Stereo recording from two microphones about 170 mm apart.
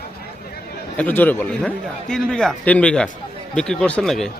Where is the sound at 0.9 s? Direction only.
10° left (ahead or behind).